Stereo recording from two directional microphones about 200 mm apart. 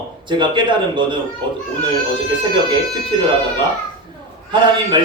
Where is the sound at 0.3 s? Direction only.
25° right (ahead or behind).